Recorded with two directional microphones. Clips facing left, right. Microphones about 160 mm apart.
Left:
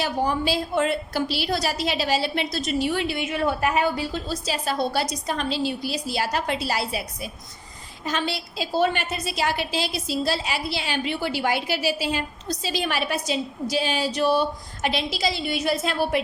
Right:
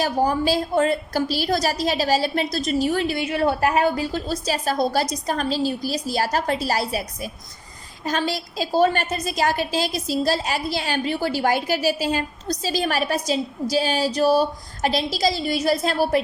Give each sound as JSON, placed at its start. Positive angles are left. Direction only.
{"t": 0.0, "sound": "a woman's voice", "side_deg": -40}